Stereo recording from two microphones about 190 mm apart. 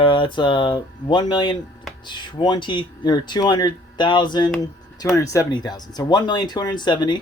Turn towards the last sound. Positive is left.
turn(degrees=25)  # may be behind; listen again after turning